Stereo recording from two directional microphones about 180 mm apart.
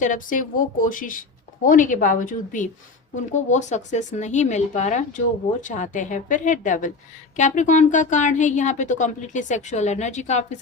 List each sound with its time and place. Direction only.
0.0 s speech: 45° left (ahead or behind)